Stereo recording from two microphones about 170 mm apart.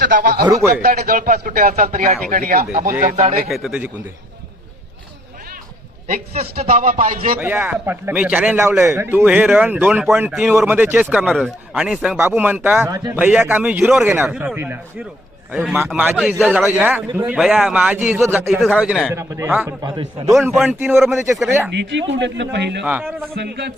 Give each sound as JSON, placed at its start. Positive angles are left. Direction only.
{"t": 0.0, "sound": "a man's voice", "side_deg": -60}
{"t": 3.2, "sound": "speech", "side_deg": -45}
{"t": 3.5, "sound": "speech", "side_deg": -5}
{"t": 6.1, "sound": "a man's voice", "side_deg": -60}
{"t": 7.3, "sound": "a man's voice", "side_deg": -10}
{"t": 19.8, "sound": "a man's voice", "side_deg": -30}
{"t": 20.5, "sound": "speech", "side_deg": 0}
{"t": 20.7, "sound": "a man's voice", "side_deg": -10}
{"t": 21.8, "sound": "speech", "side_deg": -90}
{"t": 22.8, "sound": "a man's voice", "side_deg": -10}
{"t": 23.3, "sound": "a man's voice", "side_deg": -70}